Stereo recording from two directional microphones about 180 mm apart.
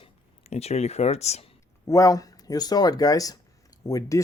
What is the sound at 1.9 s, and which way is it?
Speech, 20° left (ahead or behind).